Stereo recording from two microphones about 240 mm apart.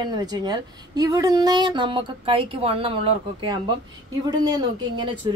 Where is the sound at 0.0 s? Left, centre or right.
Centre.